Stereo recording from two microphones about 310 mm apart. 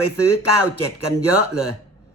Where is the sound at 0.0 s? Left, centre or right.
Left.